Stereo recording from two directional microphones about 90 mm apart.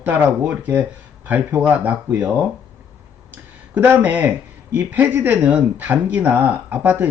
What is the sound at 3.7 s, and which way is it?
Speech, 20° right (ahead or behind).